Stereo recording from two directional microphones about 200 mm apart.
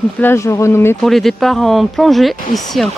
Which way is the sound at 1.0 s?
Centre (ahead or behind).